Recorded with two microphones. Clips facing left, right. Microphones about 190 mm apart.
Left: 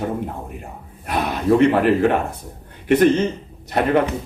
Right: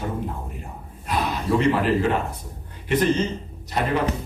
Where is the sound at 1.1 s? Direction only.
60° left (ahead or behind).